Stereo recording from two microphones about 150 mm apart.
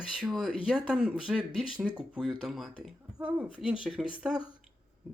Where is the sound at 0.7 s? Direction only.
5° right (ahead or behind).